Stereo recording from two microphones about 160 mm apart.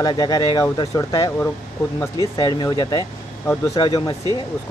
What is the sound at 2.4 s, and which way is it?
Speech, 25° left (ahead or behind).